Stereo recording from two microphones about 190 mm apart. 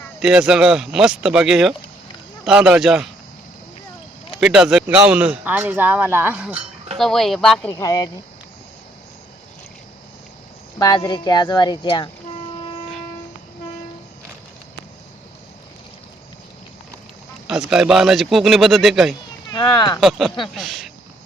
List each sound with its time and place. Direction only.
0.2 s a man's voice: 5° right (ahead or behind)
4.4 s a man's voice: 5° right (ahead or behind); by 8.1 s 20° left (ahead or behind)
10.8 s speech: 20° left (ahead or behind)
17.5 s a man's voice: centre (ahead or behind)
19.5 s speech: 20° left (ahead or behind)
20.0 s a man's voice: centre (ahead or behind)